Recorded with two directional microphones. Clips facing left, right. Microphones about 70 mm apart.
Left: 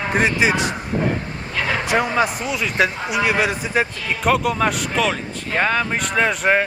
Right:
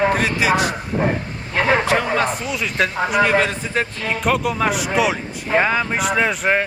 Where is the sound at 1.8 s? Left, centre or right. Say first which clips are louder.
Even; centre.